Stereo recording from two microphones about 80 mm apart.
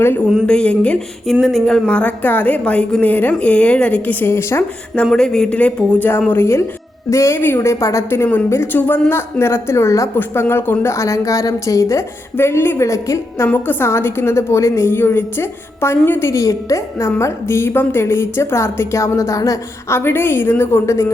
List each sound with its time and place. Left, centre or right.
0.4 s a woman's voice: centre
1.3 s a woman's voice: centre; by 4.6 s left
5.1 s a woman's voice: centre; by 13.5 s left
13.5 s a woman's voice: left
16.3 s a woman's voice: left
20.0 s speech: left